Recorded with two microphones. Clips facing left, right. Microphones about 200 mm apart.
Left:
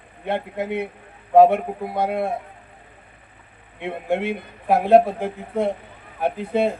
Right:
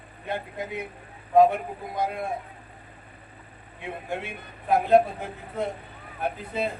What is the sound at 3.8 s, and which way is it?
A man's voice, 70° left (ahead or behind).